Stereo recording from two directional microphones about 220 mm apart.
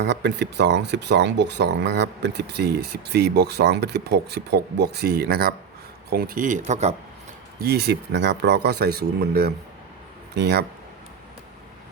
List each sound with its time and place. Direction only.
0.0 s speech: 50° right (ahead or behind); by 6.9 s 30° right (ahead or behind)
7.6 s speech: 45° right (ahead or behind)